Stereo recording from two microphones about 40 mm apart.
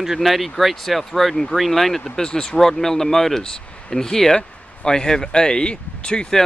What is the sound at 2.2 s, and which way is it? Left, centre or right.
Speech, centre.